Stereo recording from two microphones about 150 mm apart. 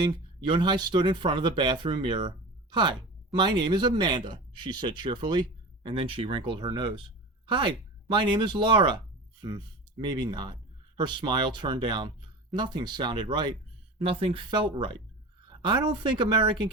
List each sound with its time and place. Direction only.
0.0 s speech: 30° right (ahead or behind)
10.0 s speech: 30° right (ahead or behind)